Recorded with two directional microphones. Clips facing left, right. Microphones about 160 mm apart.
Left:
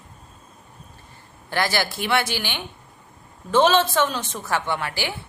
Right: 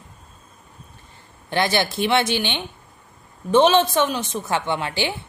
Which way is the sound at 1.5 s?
20° right (ahead or behind).